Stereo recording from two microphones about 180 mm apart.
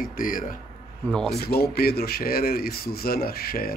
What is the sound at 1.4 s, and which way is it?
A man's voice, 60° left (ahead or behind).